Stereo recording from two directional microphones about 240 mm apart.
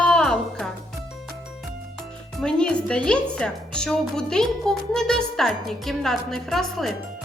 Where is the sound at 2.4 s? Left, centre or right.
Centre.